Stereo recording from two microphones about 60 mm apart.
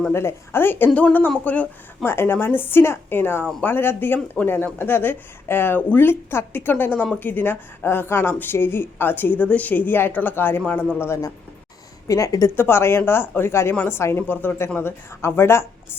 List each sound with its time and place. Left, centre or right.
0.1 s speech: left
2.0 s speech: left
12.0 s speech: left
12.5 s speech: left